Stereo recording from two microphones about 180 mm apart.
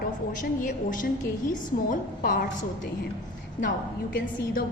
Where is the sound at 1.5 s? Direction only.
50° left (ahead or behind).